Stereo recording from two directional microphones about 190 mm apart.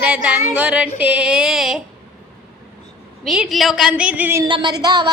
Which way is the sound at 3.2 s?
Centre (ahead or behind).